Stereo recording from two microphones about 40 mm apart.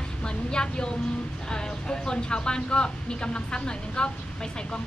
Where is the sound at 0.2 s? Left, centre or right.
Left.